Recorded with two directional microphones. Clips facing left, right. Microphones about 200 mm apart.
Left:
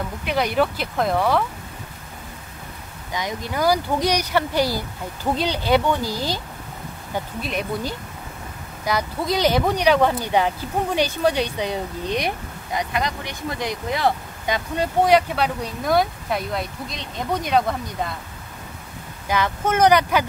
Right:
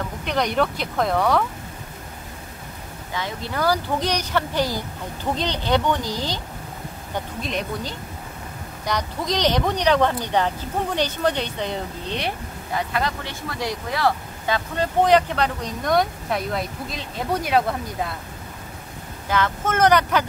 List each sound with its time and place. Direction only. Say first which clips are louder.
0.2 s speech: left 1 dB; 5° left (ahead or behind)
3.1 s speech: left 2 dB; 15° left (ahead or behind)
7.4 s speech: left 2 dB; 10° left (ahead or behind)
19.2 s speech: left 1 dB; 10° left (ahead or behind)